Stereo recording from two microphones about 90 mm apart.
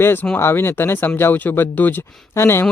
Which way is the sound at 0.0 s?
25° left (ahead or behind).